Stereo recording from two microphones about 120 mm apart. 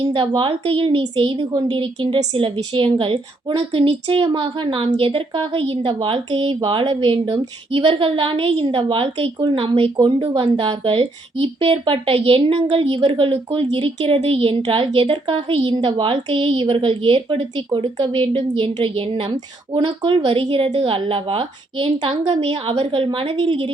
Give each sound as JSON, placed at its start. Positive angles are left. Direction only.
{"t": 0.0, "sound": "speech", "side_deg": -50}
{"t": 19.7, "sound": "speech", "side_deg": -40}